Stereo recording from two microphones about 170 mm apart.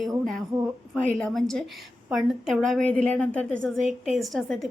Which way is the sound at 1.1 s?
5° left (ahead or behind).